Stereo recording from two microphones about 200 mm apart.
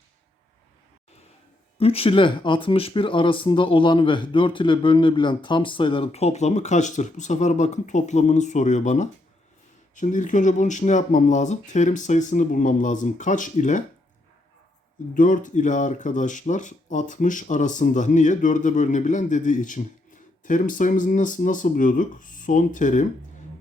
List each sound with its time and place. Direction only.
1.8 s speech: 30° left (ahead or behind)
15.1 s speech: 40° left (ahead or behind)